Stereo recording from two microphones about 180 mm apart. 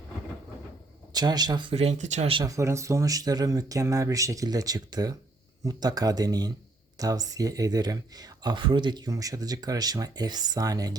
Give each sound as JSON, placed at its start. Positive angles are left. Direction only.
{"t": 1.1, "sound": "speech", "side_deg": -20}
{"t": 1.7, "sound": "speech", "side_deg": -35}
{"t": 2.4, "sound": "speech", "side_deg": -15}